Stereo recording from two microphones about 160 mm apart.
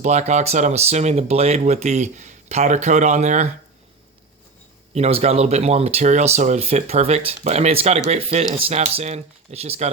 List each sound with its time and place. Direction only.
0.0 s speech: 45° right (ahead or behind)
4.9 s speech: 40° right (ahead or behind)